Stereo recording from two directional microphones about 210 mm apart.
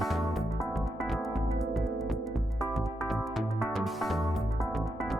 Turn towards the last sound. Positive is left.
turn(degrees=0)  # may be behind; listen again after turning